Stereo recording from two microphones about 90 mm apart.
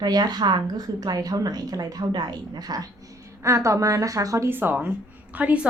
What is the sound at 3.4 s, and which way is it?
A woman's voice, 35° right (ahead or behind).